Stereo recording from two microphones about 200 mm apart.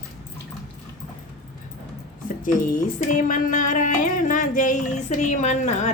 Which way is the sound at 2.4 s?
40° left (ahead or behind).